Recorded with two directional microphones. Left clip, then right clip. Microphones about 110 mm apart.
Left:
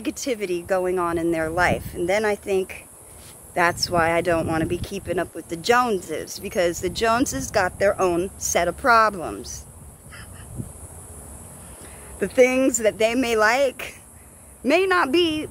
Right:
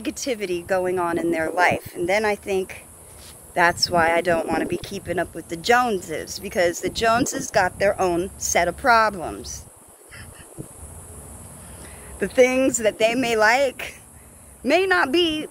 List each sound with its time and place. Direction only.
0.0 s speech: 30° left (ahead or behind)
12.2 s speech: 30° left (ahead or behind)